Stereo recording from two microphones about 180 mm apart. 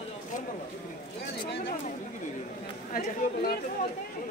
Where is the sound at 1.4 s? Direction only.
65° left (ahead or behind).